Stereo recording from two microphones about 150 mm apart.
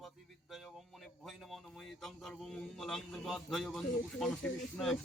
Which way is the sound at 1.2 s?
Centre (ahead or behind).